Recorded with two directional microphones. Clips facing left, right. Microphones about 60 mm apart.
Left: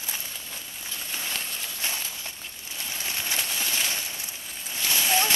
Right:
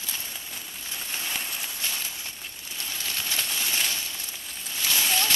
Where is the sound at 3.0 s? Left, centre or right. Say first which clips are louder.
Left 1 dB; left.